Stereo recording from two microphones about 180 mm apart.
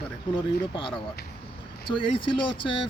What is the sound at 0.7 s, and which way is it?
Speech, 30° left (ahead or behind).